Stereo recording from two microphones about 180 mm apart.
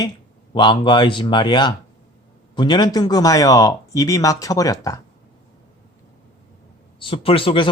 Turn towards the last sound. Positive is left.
turn(degrees=30)  # may be behind; listen again after turning